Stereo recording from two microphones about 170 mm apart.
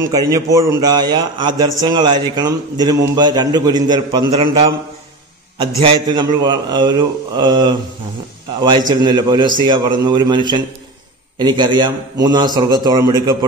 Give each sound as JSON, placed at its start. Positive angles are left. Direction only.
{"t": 0.0, "sound": "a man's voice", "side_deg": -20}
{"t": 5.8, "sound": "a man's voice", "side_deg": -30}